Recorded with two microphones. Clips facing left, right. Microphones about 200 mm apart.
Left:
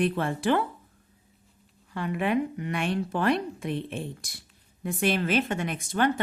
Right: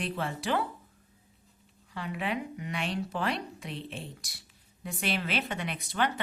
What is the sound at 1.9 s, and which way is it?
Speech, 50° left (ahead or behind).